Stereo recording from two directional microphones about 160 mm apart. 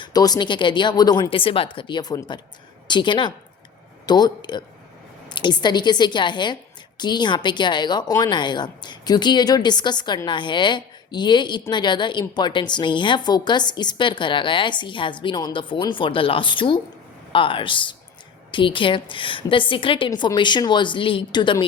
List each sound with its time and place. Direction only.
0.0 s a woman's voice: 25° left (ahead or behind)